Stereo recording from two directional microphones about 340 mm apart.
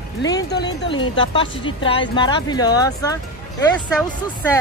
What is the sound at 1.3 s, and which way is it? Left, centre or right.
Speech, centre.